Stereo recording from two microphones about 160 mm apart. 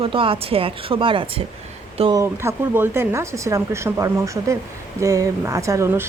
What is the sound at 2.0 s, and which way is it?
Speech, 25° right (ahead or behind).